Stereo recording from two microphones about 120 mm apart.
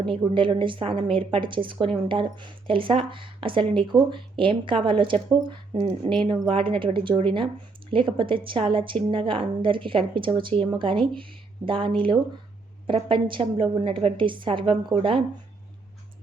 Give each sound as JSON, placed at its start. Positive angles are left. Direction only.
{"t": 0.0, "sound": "speech", "side_deg": -45}
{"t": 5.8, "sound": "speech", "side_deg": -50}
{"t": 12.9, "sound": "speech", "side_deg": -45}